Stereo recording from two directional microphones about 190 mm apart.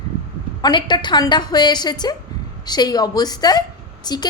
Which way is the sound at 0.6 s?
25° left (ahead or behind).